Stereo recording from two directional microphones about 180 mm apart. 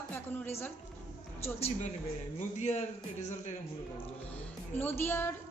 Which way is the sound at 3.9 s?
10° left (ahead or behind).